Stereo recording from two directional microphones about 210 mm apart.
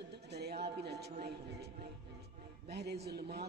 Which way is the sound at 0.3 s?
50° right (ahead or behind).